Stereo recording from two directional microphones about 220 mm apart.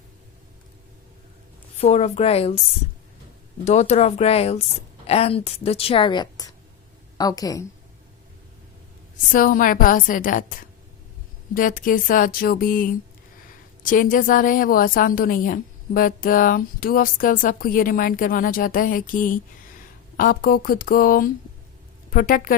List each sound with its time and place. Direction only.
1.8 s a woman's voice: 30° left (ahead or behind)
3.6 s a woman's voice: 30° left (ahead or behind); by 7.7 s 15° left (ahead or behind)
9.3 s a woman's voice: 40° left (ahead or behind)